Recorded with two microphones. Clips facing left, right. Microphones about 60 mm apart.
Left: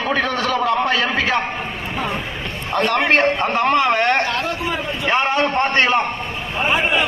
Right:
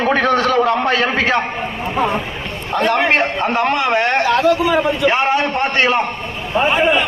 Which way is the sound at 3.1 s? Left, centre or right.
Centre.